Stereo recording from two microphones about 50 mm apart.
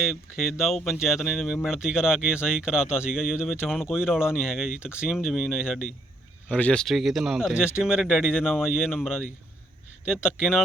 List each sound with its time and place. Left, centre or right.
0.0 s speech: centre
1.6 s speech: centre
6.5 s speech: left
6.8 s speech: centre
7.8 s speech: centre